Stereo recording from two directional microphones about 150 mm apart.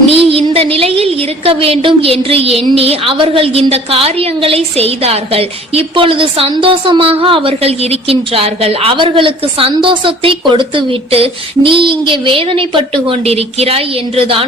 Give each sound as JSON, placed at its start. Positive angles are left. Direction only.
{"t": 0.1, "sound": "a woman's voice", "side_deg": -40}